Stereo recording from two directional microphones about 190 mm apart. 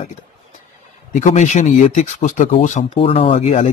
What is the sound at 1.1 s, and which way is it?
Speech, 40° left (ahead or behind).